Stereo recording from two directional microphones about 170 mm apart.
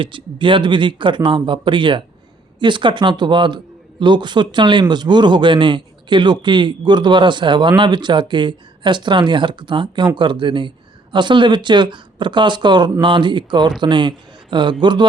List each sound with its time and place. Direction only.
0.0 s a man's voice: 30° right (ahead or behind)